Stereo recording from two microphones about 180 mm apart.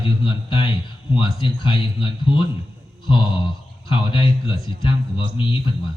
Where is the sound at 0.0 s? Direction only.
30° left (ahead or behind).